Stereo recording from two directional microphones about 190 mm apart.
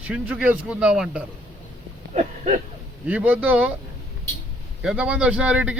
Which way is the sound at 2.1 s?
35° right (ahead or behind).